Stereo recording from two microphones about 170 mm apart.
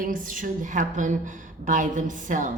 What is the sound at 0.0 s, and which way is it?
A woman's voice, 55° right (ahead or behind).